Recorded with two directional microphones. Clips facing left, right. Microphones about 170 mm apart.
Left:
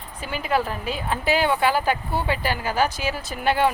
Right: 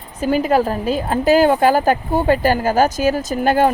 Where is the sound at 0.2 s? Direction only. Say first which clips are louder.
Right 9 dB; 40° right (ahead or behind).